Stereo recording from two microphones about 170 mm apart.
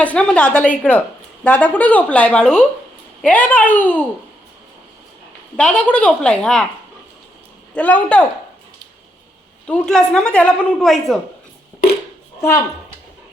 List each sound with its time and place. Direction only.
0.0 s speech: 5° left (ahead or behind)
5.5 s a woman's voice: 5° left (ahead or behind)
7.8 s speech: 10° left (ahead or behind)
9.6 s a woman's voice: 5° left (ahead or behind)
12.4 s speech: 15° left (ahead or behind)